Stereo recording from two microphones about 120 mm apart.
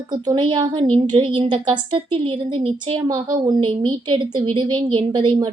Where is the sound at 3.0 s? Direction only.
35° right (ahead or behind).